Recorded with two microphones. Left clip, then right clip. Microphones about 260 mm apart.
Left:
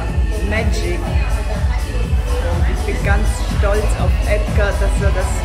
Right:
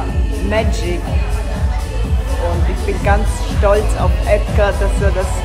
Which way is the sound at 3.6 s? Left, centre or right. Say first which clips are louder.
Right 6 dB; right.